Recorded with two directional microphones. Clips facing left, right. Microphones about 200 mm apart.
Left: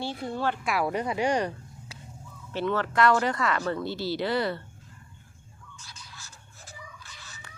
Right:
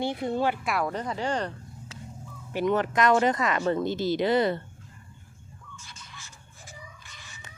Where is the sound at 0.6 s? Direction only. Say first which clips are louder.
Even; centre (ahead or behind).